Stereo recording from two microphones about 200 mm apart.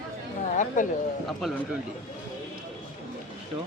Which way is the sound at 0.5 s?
40° left (ahead or behind).